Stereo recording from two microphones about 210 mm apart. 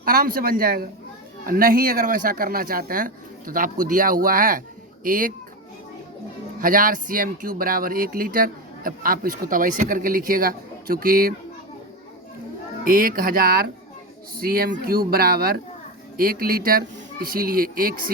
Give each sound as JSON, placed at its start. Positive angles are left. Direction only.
{"t": 0.0, "sound": "speech", "side_deg": -45}
{"t": 6.6, "sound": "speech", "side_deg": -40}
{"t": 12.8, "sound": "speech", "side_deg": -40}